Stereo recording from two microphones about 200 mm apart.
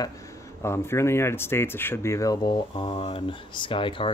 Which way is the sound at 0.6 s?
15° left (ahead or behind).